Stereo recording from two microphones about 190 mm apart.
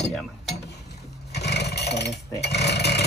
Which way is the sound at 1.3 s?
60° left (ahead or behind).